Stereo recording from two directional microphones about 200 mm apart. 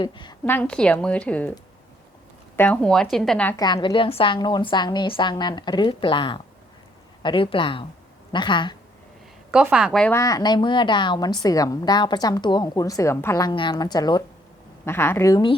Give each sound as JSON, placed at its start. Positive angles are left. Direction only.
{"t": 0.0, "sound": "speech", "side_deg": 25}
{"t": 0.4, "sound": "a woman's voice", "side_deg": 10}
{"t": 2.6, "sound": "speech", "side_deg": 5}
{"t": 3.6, "sound": "speech", "side_deg": 20}
{"t": 9.5, "sound": "a woman's voice", "side_deg": -5}